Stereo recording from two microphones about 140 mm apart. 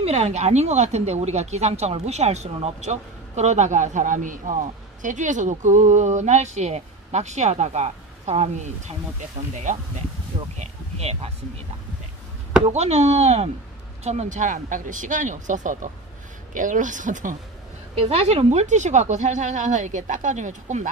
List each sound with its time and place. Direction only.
0.0 s speech: 50° right (ahead or behind)
10.6 s a sound: 50° right (ahead or behind)
12.6 s speech: 50° right (ahead or behind)
18.0 s speech: 45° right (ahead or behind)